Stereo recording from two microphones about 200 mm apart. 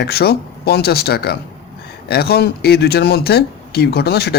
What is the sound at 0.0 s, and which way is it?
Speech, 55° left (ahead or behind).